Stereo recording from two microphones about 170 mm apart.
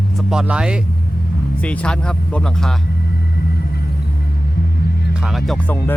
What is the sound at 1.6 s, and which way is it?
Speech, 5° left (ahead or behind).